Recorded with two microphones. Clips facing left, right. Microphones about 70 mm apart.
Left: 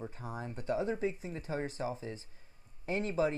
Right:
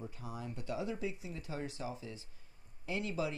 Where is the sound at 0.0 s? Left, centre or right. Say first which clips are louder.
Left 3 dB; left.